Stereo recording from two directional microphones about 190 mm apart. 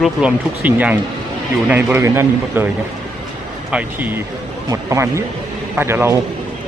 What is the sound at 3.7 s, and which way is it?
Speech, 10° right (ahead or behind).